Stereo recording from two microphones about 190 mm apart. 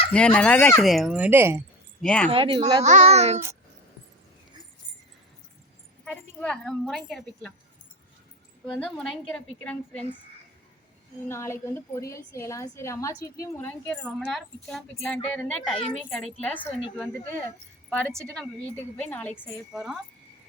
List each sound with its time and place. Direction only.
0.1 s speech: 5° left (ahead or behind); by 1.6 s 10° right (ahead or behind)
2.0 s speech: 5° left (ahead or behind)
2.3 s speech: 30° right (ahead or behind)
2.8 s a child's voice: 35° right (ahead or behind)
6.1 s speech: 5° left (ahead or behind)
8.7 s speech: 5° left (ahead or behind)
11.3 s a woman's voice: 15° left (ahead or behind)
19.7 s speech: centre (ahead or behind)